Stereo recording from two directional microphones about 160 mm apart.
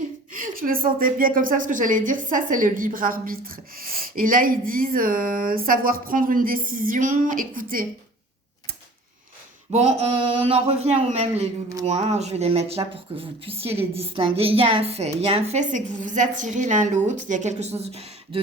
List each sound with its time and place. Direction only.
0.3 s a woman's voice: 60° right (ahead or behind)
9.7 s speech: 40° right (ahead or behind)